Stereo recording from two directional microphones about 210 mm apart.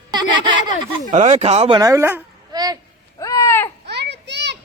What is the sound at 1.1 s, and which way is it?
Speech, 35° right (ahead or behind).